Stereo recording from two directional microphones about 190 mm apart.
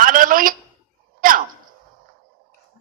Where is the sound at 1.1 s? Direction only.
45° right (ahead or behind).